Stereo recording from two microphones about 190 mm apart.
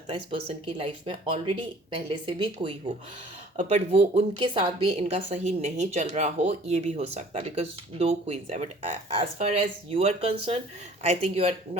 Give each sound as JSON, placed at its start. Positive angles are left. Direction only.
{"t": 0.3, "sound": "speech", "side_deg": -30}
{"t": 3.6, "sound": "a woman's voice", "side_deg": -40}
{"t": 4.4, "sound": "a woman's voice", "side_deg": -25}